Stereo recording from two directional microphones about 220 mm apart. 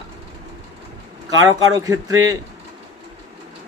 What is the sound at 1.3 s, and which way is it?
Speech, 15° right (ahead or behind).